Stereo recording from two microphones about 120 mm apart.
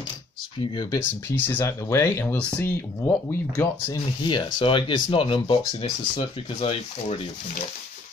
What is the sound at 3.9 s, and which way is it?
Speech, 40° left (ahead or behind).